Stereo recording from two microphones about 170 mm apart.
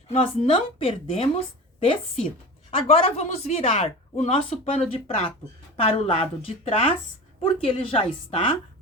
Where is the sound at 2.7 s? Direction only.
35° left (ahead or behind).